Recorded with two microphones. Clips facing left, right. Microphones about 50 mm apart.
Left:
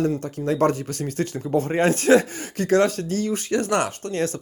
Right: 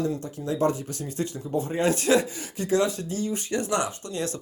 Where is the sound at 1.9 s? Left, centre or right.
Left.